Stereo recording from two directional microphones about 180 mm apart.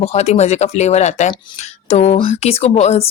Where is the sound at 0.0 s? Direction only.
35° left (ahead or behind).